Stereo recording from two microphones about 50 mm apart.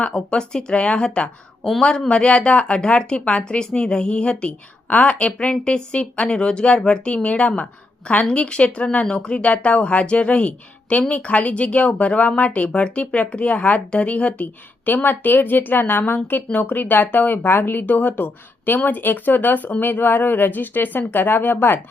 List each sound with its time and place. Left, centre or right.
0.0 s a woman's voice: left